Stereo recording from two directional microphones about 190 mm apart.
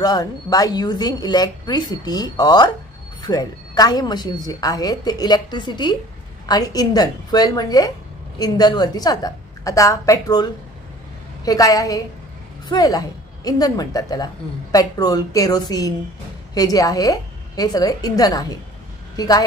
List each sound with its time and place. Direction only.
0.0 s a woman's voice: 20° left (ahead or behind)